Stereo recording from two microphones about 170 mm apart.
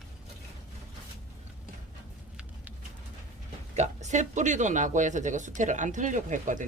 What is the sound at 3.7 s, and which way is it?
Speech, 40° right (ahead or behind).